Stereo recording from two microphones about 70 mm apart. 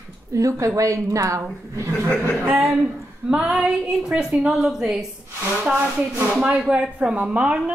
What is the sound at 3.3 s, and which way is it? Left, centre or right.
Speech, centre.